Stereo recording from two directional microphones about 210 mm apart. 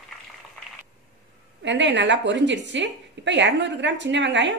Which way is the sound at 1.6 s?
60° right (ahead or behind).